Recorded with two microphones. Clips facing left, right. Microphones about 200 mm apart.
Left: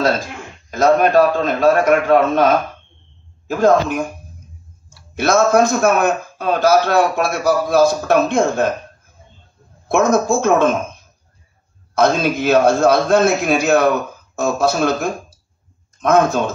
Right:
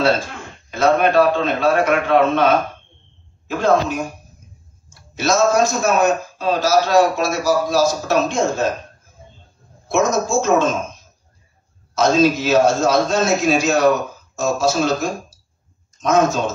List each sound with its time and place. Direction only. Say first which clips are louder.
0.7 s a man's voice: left 2 dB; 40° left (ahead or behind)
3.4 s a man's voice: left 3 dB; 45° left (ahead or behind)
5.1 s a man's voice: left 2 dB; 55° left (ahead or behind)
9.8 s a man's voice: left 3 dB; 60° left (ahead or behind)
11.9 s a man's voice: right 1 dB; 55° left (ahead or behind)